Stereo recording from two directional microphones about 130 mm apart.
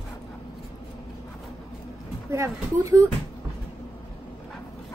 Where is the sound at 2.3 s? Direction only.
25° right (ahead or behind).